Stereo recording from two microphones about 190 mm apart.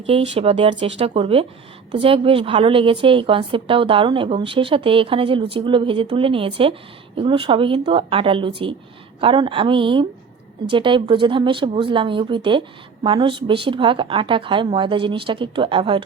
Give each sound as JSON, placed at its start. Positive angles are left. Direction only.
{"t": 0.1, "sound": "speech", "side_deg": -30}